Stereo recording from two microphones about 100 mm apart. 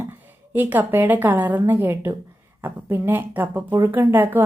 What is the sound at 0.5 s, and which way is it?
A woman's voice, 20° right (ahead or behind).